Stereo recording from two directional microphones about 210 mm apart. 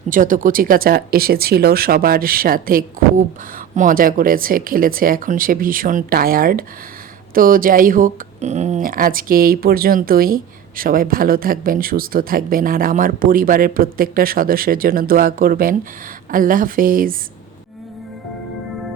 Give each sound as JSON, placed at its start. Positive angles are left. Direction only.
{"t": 0.1, "sound": "speech", "side_deg": -40}